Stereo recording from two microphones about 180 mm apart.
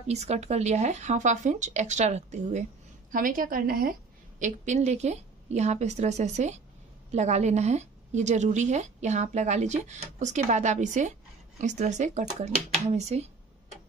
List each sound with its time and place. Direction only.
0.1 s a woman's voice: 40° right (ahead or behind)